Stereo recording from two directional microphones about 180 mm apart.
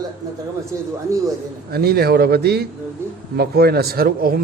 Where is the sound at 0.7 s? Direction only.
15° right (ahead or behind).